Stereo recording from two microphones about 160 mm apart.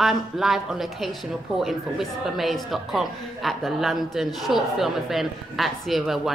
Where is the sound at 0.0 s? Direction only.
Centre (ahead or behind).